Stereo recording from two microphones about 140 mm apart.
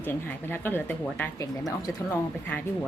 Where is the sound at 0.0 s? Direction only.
15° left (ahead or behind).